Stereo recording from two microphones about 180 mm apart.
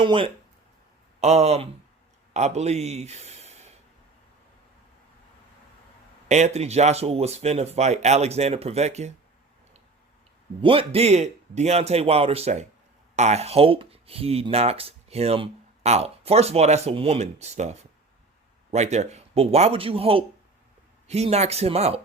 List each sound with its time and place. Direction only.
0.0 s speech: 30° right (ahead or behind)
6.2 s speech: 40° right (ahead or behind)
10.6 s speech: 30° right (ahead or behind)